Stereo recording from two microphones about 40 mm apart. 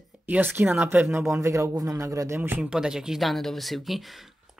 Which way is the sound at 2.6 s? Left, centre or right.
Centre.